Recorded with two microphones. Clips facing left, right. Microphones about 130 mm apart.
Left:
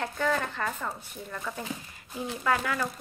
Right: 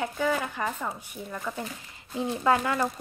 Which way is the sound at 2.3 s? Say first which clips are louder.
Right 4 dB; 25° right (ahead or behind).